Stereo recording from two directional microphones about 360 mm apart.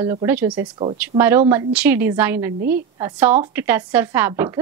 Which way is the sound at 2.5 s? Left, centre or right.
Right.